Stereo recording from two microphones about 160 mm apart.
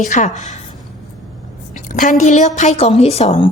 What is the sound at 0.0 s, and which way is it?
Speech, 45° left (ahead or behind).